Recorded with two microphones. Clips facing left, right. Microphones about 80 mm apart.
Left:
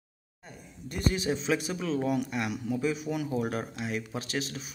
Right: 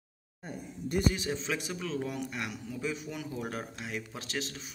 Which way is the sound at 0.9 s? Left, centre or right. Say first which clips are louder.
Left 1 dB; centre.